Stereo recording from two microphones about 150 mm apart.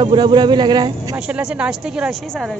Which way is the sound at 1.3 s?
5° right (ahead or behind).